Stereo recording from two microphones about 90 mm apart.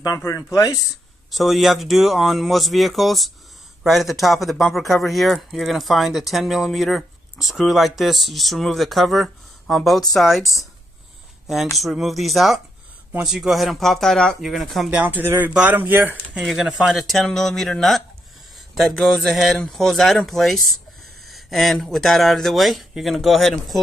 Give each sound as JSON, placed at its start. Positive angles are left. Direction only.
{"t": 0.2, "sound": "speech", "side_deg": 40}
{"t": 1.3, "sound": "speech", "side_deg": 0}
{"t": 14.9, "sound": "speech", "side_deg": -20}
{"t": 16.3, "sound": "speech", "side_deg": -5}
{"t": 18.9, "sound": "a sound", "side_deg": 10}
{"t": 19.3, "sound": "speech", "side_deg": 0}